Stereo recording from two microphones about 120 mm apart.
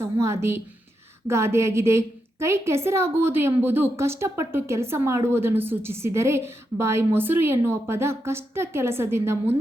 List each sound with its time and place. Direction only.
0.0 s a woman's voice: 25° right (ahead or behind)